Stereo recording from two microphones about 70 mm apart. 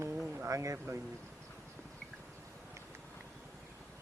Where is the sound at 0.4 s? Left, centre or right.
Right.